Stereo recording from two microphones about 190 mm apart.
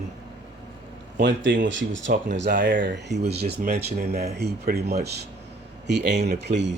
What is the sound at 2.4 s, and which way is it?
Speech, 60° right (ahead or behind).